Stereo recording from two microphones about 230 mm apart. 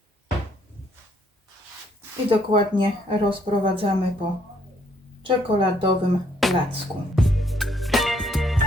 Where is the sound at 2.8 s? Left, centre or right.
Right.